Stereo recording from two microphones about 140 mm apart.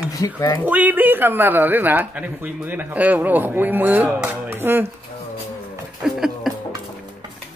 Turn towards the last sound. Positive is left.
turn(degrees=0)  # may be behind; listen again after turning